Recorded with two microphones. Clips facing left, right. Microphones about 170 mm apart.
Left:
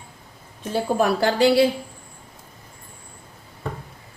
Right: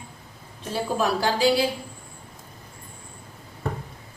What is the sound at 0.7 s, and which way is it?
Speech, 55° left (ahead or behind).